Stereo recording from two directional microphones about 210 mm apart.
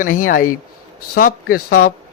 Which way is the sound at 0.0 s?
40° left (ahead or behind).